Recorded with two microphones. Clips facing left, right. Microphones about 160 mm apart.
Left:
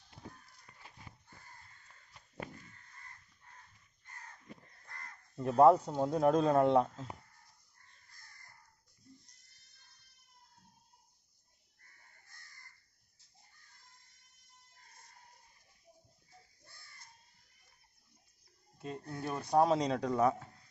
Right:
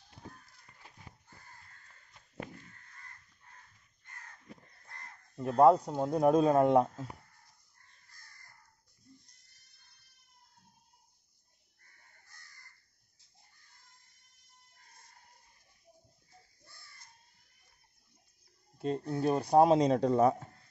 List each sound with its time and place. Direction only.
5.3 s speech: centre (ahead or behind)
5.9 s speech: 10° right (ahead or behind)
19.0 s speech: 25° right (ahead or behind)